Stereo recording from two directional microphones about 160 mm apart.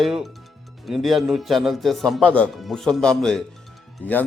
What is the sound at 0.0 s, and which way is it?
A man's voice, centre (ahead or behind).